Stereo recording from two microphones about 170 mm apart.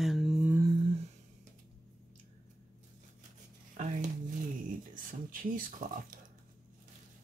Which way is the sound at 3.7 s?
45° right (ahead or behind).